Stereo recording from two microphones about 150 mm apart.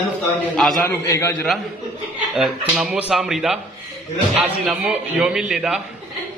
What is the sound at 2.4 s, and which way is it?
A man's voice, centre (ahead or behind).